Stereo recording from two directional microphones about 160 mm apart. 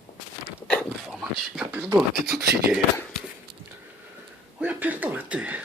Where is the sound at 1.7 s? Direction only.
10° right (ahead or behind).